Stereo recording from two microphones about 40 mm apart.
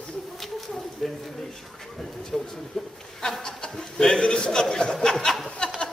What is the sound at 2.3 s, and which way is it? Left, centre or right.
A man's voice, centre.